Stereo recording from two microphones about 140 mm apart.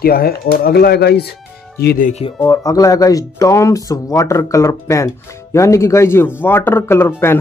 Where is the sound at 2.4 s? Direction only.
25° left (ahead or behind).